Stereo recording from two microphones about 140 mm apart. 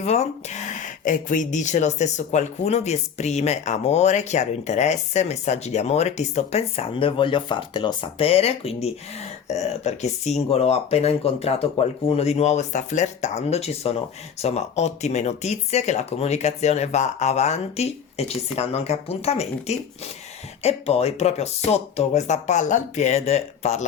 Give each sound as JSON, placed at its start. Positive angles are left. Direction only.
{"t": 0.0, "sound": "speech", "side_deg": 55}